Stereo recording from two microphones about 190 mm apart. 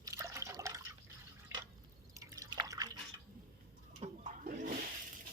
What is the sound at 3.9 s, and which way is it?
Toilet flush, 35° right (ahead or behind).